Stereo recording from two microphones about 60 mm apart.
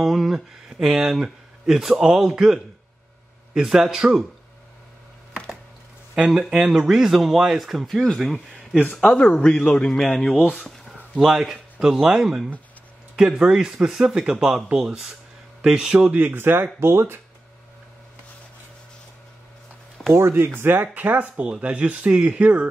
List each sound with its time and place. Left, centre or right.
0.0 s speech: centre
6.1 s speech: centre
9.0 s a man's voice: centre
11.1 s speech: centre
15.6 s speech: centre
16.1 s speech: right
20.2 s speech: right
20.6 s speech: right